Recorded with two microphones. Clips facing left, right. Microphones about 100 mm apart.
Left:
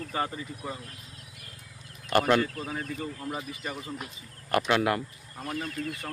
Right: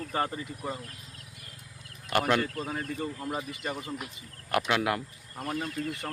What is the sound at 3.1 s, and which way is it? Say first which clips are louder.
Speech: right 1 dB; 15° right (ahead or behind).